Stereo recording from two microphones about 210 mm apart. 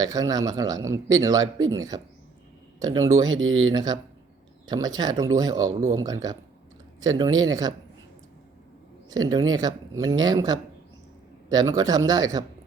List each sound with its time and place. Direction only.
0.0 s speech: 15° right (ahead or behind)
3.2 s speech: 65° right (ahead or behind)
3.7 s speech: 20° right (ahead or behind)
9.0 s speech: 20° right (ahead or behind)